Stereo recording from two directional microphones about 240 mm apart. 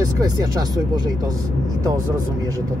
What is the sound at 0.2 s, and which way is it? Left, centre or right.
Speech, centre.